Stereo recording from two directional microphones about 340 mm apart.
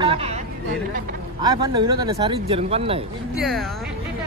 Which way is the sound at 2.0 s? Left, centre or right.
Centre.